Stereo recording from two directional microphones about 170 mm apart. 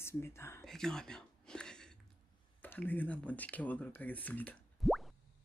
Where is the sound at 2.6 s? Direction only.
10° left (ahead or behind).